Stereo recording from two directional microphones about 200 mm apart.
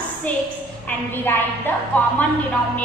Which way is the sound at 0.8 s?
10° left (ahead or behind).